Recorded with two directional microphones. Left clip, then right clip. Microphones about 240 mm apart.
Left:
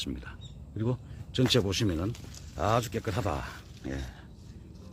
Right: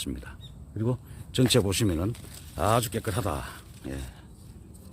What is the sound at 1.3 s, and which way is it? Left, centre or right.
Speech, right.